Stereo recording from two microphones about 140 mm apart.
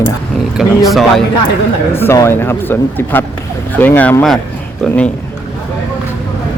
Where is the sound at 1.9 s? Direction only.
15° left (ahead or behind).